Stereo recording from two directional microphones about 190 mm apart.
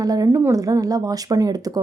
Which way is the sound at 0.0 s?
20° right (ahead or behind).